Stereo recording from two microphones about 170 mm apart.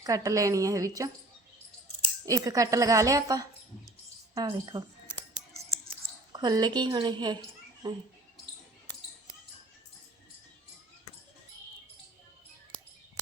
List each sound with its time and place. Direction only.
0.0 s a woman's voice: 20° right (ahead or behind)
2.2 s a woman's voice: 20° right (ahead or behind)
6.3 s a woman's voice: 25° right (ahead or behind)